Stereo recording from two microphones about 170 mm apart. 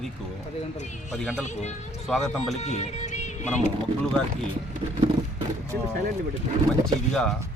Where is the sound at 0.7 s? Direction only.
45° left (ahead or behind).